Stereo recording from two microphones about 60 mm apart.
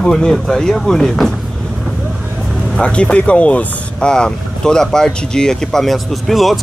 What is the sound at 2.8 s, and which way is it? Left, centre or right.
Speech, centre.